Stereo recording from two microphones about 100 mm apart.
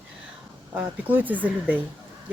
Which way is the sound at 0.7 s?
15° right (ahead or behind).